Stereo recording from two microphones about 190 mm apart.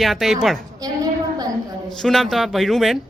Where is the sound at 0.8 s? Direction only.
20° right (ahead or behind).